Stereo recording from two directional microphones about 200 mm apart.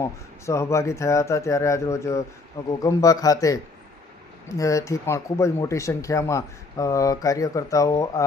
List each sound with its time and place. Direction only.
0.0 s speech: 15° left (ahead or behind)